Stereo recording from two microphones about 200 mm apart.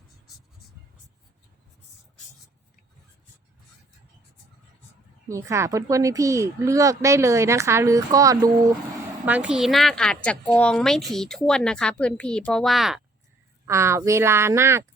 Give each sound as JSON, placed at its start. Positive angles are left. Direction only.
{"t": 5.3, "sound": "a woman's voice", "side_deg": -15}
{"t": 13.7, "sound": "speech", "side_deg": -15}